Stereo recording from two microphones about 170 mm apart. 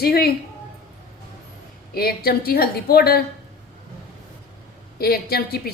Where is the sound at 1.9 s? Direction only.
65° left (ahead or behind).